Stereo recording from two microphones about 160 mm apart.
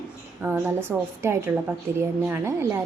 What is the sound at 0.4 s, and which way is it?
A woman's voice, 15° right (ahead or behind).